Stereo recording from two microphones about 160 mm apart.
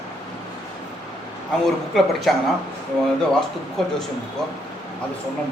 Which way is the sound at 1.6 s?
Centre (ahead or behind).